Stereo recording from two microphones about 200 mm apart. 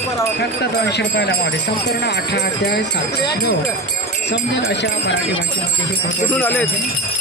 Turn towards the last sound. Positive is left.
turn(degrees=10)  # may be behind; listen again after turning